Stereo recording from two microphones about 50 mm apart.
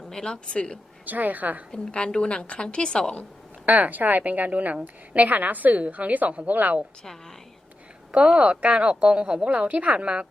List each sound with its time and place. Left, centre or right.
0.1 s a woman's voice: centre
1.0 s a woman's voice: right
1.9 s a woman's voice: left
3.7 s a woman's voice: right
7.0 s a woman's voice: centre
8.1 s a woman's voice: right